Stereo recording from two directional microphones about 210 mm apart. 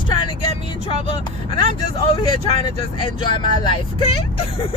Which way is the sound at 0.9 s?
25° left (ahead or behind).